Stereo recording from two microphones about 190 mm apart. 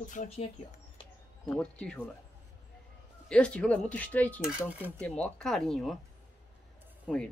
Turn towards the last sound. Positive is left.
turn(degrees=0)  # may be behind; listen again after turning